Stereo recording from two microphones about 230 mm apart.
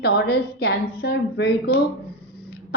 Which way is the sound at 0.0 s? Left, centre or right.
Left.